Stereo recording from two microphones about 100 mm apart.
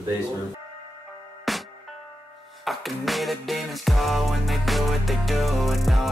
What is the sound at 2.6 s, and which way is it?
Music, centre (ahead or behind).